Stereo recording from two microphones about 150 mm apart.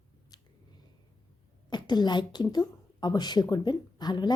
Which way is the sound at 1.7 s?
30° left (ahead or behind).